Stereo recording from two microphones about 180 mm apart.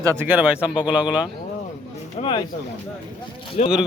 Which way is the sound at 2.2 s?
25° left (ahead or behind).